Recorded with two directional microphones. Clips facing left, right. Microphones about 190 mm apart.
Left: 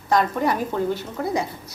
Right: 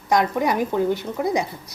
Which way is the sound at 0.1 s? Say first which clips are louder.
Right 1 dB; 15° right (ahead or behind).